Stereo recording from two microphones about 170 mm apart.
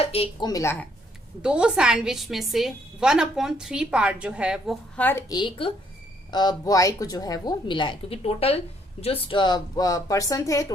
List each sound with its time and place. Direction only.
0.0 s a woman's voice: 35° left (ahead or behind); by 0.9 s 15° left (ahead or behind)
1.4 s a woman's voice: 5° right (ahead or behind)
5.3 s a woman's voice: 30° left (ahead or behind)